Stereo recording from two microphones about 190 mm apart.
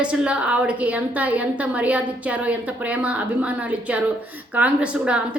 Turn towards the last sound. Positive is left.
turn(degrees=-5)  # may be behind; listen again after turning